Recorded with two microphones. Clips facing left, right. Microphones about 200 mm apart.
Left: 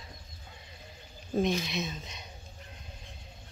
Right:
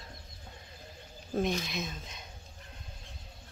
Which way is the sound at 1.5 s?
Centre (ahead or behind).